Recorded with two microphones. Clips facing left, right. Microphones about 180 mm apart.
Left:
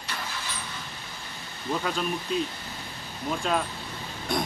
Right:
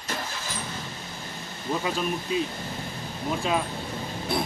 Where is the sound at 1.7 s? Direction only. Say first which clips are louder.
Right 1 dB; 5° right (ahead or behind).